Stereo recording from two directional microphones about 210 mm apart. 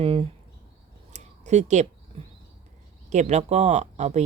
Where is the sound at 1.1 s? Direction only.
35° right (ahead or behind).